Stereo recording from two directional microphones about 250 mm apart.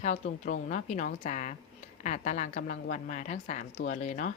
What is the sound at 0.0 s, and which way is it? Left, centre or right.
Speech, left.